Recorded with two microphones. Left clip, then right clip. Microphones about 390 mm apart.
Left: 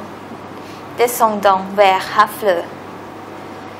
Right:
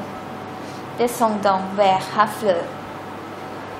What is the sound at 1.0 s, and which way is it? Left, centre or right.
A woman's voice, left.